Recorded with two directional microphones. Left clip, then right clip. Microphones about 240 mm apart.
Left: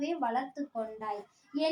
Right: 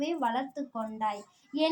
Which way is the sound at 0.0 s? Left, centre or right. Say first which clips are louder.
Right 2 dB; right.